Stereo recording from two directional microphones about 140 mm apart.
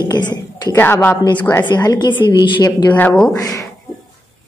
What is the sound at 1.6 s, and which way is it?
A woman's voice, 30° left (ahead or behind).